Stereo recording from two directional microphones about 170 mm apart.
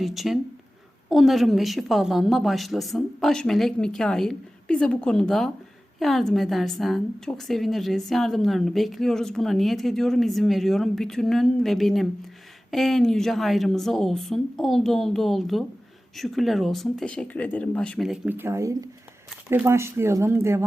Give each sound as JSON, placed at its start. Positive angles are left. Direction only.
{"t": 0.0, "sound": "a woman's voice", "side_deg": 0}